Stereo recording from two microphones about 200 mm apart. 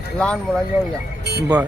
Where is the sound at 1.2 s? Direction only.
55° right (ahead or behind).